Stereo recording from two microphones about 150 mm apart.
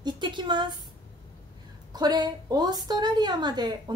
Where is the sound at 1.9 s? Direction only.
30° right (ahead or behind).